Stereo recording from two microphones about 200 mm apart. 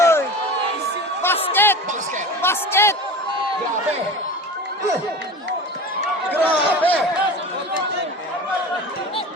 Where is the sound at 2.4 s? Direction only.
10° left (ahead or behind).